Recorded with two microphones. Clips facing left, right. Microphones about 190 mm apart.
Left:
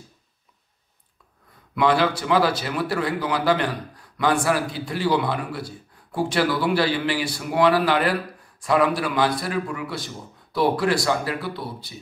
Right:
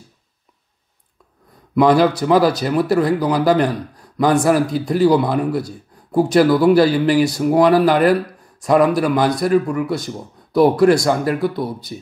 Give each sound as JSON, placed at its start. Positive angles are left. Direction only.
{"t": 1.8, "sound": "speech", "side_deg": -40}